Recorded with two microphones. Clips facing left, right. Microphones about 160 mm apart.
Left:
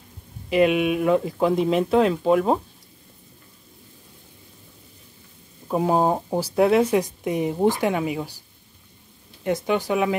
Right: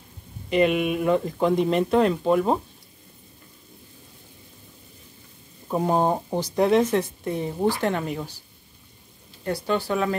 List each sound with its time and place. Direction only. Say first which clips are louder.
0.5 s speech: left 2 dB; 5° left (ahead or behind)
5.7 s speech: left 2 dB; 5° left (ahead or behind)
7.9 s speech: left 3 dB; 5° left (ahead or behind)
9.4 s speech: left 2 dB; 15° left (ahead or behind)